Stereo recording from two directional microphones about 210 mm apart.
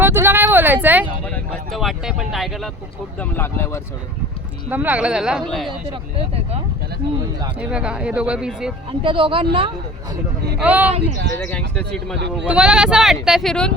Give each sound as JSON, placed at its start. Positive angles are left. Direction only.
{"t": 0.0, "sound": "a sound", "side_deg": -10}
{"t": 1.7, "sound": "speech", "side_deg": 0}
{"t": 4.7, "sound": "speech", "side_deg": -10}
{"t": 6.1, "sound": "speech", "side_deg": -30}
{"t": 7.6, "sound": "speech", "side_deg": -5}
{"t": 8.9, "sound": "speech", "side_deg": -25}
{"t": 10.6, "sound": "speech", "side_deg": -5}
{"t": 11.7, "sound": "speech", "side_deg": 5}
{"t": 12.1, "sound": "speech", "side_deg": -55}
{"t": 12.5, "sound": "speech", "side_deg": -5}